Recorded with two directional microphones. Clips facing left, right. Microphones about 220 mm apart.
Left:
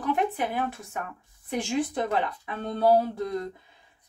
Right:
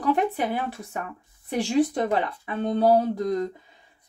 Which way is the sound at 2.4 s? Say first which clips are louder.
Right 4 dB; 35° right (ahead or behind).